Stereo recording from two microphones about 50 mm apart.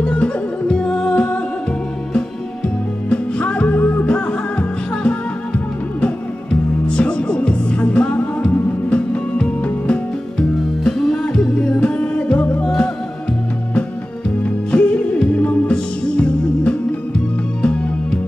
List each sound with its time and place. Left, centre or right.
0.0 s music: left
14.4 s music: left